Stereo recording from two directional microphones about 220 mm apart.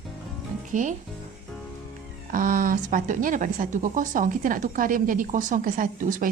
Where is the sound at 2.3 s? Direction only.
40° right (ahead or behind).